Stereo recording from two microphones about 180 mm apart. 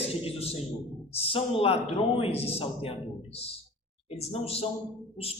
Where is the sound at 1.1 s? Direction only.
35° left (ahead or behind).